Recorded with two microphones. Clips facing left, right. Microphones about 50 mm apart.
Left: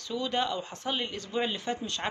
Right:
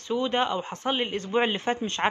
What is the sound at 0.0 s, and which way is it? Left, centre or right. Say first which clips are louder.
A man's voice: right 5 dB; right.